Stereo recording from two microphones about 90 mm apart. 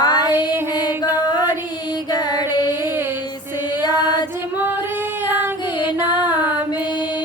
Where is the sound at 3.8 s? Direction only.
50° left (ahead or behind).